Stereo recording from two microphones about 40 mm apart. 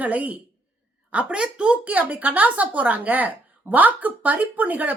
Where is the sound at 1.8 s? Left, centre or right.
Right.